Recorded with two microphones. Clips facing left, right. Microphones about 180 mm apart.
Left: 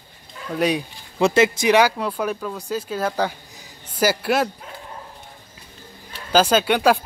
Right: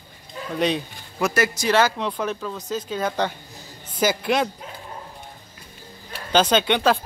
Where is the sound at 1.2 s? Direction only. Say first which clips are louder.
Left 5 dB; 25° left (ahead or behind); by 4.4 s 5° left (ahead or behind).